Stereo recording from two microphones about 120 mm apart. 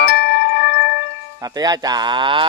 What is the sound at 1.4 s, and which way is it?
Speech, 30° right (ahead or behind).